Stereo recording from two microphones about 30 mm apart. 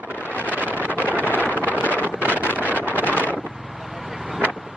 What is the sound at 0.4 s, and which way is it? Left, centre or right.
Vehicle, left.